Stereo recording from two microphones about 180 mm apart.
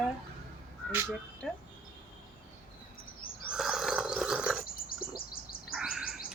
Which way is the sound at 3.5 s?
5° right (ahead or behind).